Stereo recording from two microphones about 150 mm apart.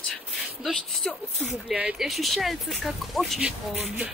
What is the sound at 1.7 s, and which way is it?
Speech, 5° right (ahead or behind).